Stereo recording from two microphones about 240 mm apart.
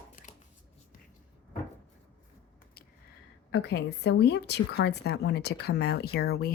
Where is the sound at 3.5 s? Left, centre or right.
Left.